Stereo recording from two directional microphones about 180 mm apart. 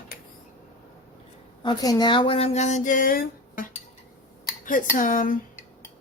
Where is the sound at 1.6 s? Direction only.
25° left (ahead or behind); by 3.7 s 50° left (ahead or behind).